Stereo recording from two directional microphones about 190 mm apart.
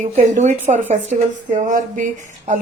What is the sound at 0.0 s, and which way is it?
Speech, 40° right (ahead or behind).